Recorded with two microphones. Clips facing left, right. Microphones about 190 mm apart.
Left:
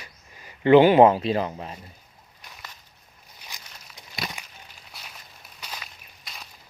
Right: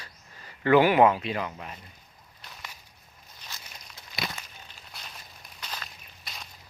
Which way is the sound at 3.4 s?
10° left (ahead or behind).